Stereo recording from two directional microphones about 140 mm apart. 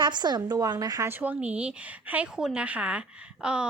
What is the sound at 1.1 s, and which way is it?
Speech, 10° right (ahead or behind).